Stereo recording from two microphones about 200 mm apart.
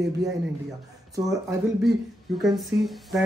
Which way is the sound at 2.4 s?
Centre (ahead or behind).